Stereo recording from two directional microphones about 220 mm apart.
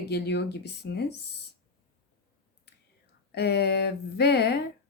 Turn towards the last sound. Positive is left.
turn(degrees=50)  # may be behind; listen again after turning